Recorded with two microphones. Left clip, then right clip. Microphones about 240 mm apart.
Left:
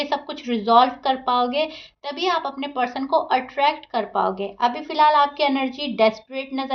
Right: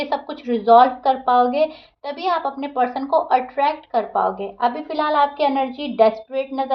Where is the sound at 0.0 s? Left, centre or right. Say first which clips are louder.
Right 1 dB; left.